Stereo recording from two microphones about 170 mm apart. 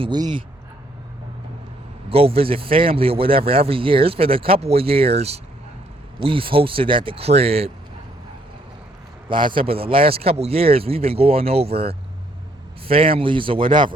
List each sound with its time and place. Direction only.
0.0 s speech: 25° right (ahead or behind)
2.0 s speech: 35° right (ahead or behind)
9.3 s speech: 30° right (ahead or behind)